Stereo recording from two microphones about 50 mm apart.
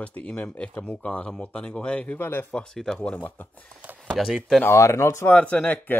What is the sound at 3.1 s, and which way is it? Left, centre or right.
Speech, left.